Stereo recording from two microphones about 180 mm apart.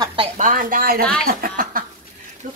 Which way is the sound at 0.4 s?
45° right (ahead or behind).